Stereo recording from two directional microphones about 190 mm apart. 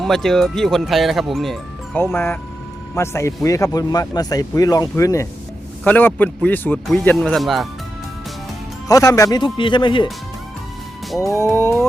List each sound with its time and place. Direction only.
0.0 s speech: centre (ahead or behind)
2.0 s speech: 10° left (ahead or behind)
8.9 s speech: 20° left (ahead or behind)
11.2 s speech: 15° left (ahead or behind)